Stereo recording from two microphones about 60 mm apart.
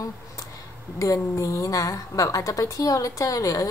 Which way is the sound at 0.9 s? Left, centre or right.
Left.